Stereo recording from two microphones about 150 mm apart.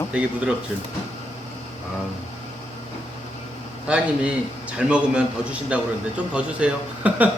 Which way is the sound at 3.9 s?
10° right (ahead or behind).